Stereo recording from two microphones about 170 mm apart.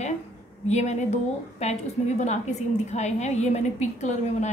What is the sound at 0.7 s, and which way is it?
A woman's voice, 45° left (ahead or behind).